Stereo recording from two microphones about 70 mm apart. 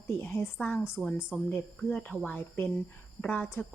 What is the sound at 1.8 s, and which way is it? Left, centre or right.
Speech, centre.